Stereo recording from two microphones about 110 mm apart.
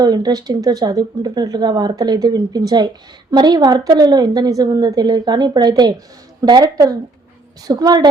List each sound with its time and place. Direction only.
0.0 s speech: 40° right (ahead or behind)